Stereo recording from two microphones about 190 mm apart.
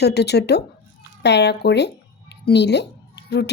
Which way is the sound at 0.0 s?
60° left (ahead or behind).